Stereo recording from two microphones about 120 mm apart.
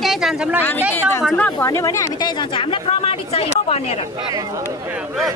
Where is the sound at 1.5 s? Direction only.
25° left (ahead or behind).